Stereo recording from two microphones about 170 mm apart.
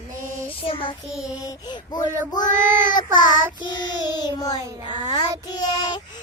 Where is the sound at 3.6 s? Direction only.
25° left (ahead or behind).